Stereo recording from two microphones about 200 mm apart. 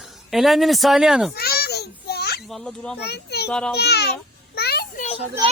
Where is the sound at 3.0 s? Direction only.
55° left (ahead or behind).